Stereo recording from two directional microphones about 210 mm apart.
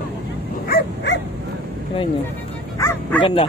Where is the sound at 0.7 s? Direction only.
50° left (ahead or behind).